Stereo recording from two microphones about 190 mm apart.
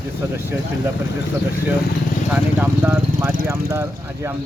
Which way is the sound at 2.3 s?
10° right (ahead or behind).